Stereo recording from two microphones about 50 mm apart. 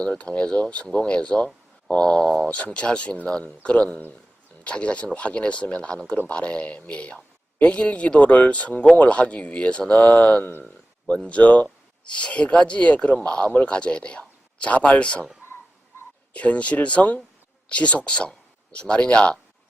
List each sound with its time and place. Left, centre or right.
0.0 s speech: left
15.4 s tick-tock: left
16.3 s speech: left